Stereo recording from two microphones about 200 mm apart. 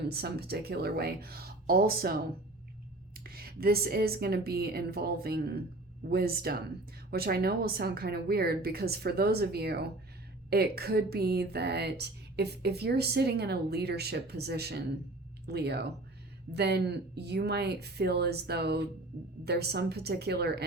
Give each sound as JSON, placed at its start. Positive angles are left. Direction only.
{"t": 0.1, "sound": "a woman's voice", "side_deg": -50}
{"t": 3.2, "sound": "a woman's voice", "side_deg": -50}